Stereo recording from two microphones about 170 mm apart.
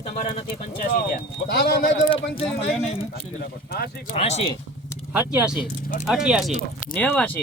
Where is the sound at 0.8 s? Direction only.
55° left (ahead or behind).